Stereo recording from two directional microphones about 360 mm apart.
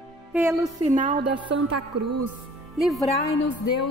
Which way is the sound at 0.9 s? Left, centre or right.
Right.